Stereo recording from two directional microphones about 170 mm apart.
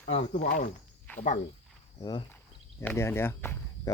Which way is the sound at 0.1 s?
40° left (ahead or behind).